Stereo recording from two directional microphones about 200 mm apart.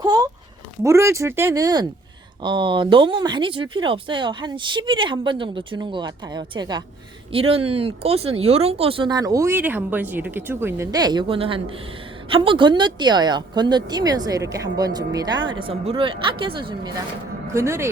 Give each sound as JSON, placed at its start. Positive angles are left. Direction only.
{"t": 0.0, "sound": "a sound", "side_deg": -20}
{"t": 0.8, "sound": "speech", "side_deg": -15}
{"t": 17.5, "sound": "speech", "side_deg": -15}